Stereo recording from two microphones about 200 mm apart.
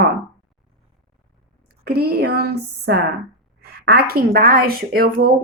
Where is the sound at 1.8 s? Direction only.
50° right (ahead or behind).